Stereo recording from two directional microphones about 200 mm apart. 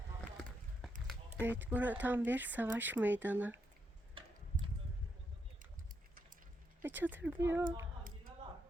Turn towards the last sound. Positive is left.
turn(degrees=-10)  # may be behind; listen again after turning